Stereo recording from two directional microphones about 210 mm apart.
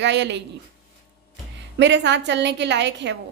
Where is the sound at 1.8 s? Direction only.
55° right (ahead or behind).